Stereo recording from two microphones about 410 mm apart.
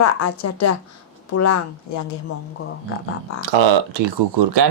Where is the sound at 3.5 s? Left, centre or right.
Right.